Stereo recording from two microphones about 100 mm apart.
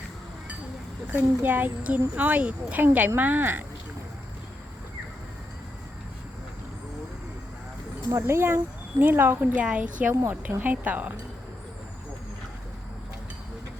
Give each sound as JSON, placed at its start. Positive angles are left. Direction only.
{"t": 1.1, "sound": "speech", "side_deg": -20}
{"t": 8.1, "sound": "speech", "side_deg": -25}